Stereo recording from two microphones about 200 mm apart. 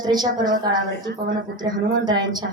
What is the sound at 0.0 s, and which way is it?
Speech, 20° right (ahead or behind).